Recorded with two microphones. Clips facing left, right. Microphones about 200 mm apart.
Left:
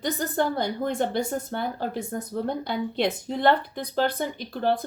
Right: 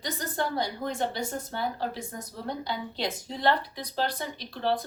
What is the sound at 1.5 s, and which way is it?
Speech, 50° left (ahead or behind).